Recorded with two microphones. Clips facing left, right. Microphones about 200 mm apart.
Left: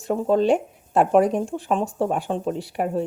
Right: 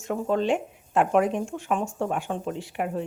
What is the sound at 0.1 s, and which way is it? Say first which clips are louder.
Speech: left 5 dB; 35° left (ahead or behind).